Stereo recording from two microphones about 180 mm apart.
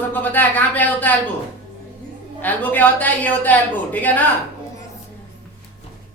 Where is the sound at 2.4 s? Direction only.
10° left (ahead or behind).